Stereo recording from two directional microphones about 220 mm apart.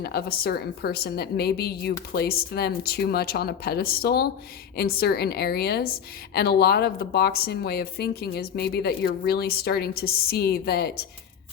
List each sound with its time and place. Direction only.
0.0 s a woman's voice: 45° left (ahead or behind)